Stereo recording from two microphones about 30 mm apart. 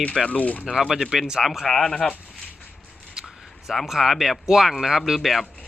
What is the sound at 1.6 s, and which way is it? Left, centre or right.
Speech, centre.